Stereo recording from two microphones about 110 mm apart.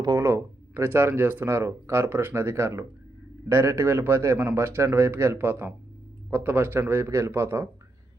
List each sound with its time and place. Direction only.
0.2 s speech: 20° right (ahead or behind)